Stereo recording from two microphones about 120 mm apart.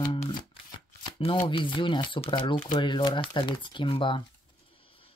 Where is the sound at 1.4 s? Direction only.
45° left (ahead or behind).